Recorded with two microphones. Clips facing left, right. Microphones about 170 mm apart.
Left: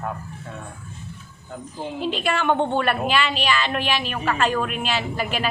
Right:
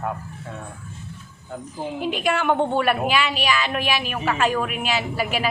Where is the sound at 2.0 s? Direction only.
10° right (ahead or behind).